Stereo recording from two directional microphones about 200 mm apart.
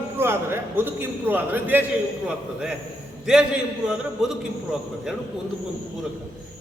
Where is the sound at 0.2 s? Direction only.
10° right (ahead or behind).